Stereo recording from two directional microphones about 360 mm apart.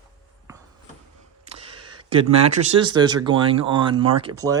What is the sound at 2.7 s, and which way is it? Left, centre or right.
Speech, centre.